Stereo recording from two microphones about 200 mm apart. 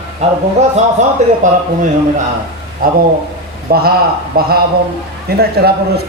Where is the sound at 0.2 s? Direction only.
30° right (ahead or behind).